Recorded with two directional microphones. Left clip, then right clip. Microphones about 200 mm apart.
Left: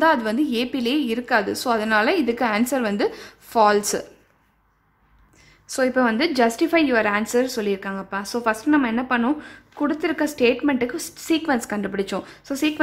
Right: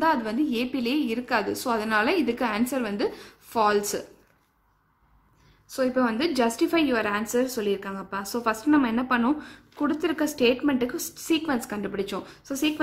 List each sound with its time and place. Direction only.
0.0 s a woman's voice: 20° left (ahead or behind)
5.7 s a woman's voice: 25° left (ahead or behind)